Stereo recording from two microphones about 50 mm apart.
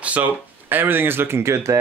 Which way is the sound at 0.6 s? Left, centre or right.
Right.